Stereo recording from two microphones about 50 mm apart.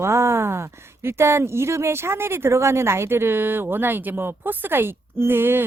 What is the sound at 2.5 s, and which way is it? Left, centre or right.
Speech, right.